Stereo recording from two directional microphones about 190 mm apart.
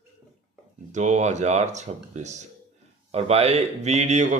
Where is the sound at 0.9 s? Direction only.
40° right (ahead or behind).